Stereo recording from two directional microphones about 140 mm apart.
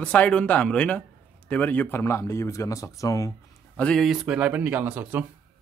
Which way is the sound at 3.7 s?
5° left (ahead or behind).